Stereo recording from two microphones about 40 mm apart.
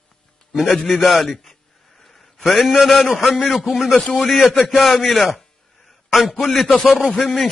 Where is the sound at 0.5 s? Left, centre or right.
Centre.